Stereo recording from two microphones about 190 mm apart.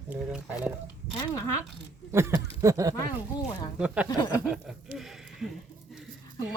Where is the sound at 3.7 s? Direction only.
5° right (ahead or behind).